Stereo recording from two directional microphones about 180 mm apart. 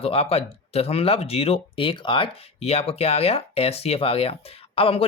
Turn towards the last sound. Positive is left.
turn(degrees=30)  # may be behind; listen again after turning